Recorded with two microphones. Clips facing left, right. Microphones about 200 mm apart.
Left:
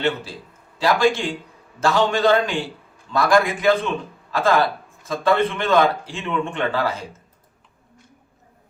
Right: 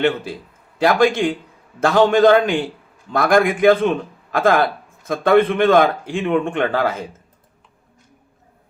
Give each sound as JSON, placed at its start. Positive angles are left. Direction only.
{"t": 0.8, "sound": "speech", "side_deg": -55}